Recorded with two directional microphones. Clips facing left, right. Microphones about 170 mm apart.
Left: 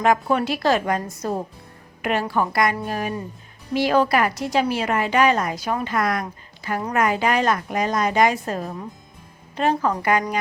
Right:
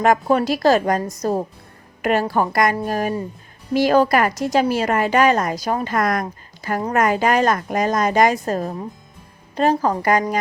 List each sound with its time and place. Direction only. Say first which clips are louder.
0.0 s a woman's voice: right 3 dB; 40° right (ahead or behind)